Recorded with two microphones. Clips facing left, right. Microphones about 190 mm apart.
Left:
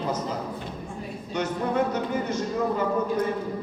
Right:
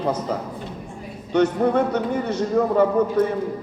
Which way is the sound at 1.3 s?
60° right (ahead or behind).